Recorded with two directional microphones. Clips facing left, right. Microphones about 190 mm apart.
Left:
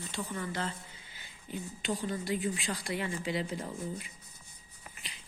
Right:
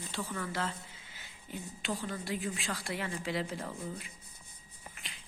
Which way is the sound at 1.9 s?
20° left (ahead or behind).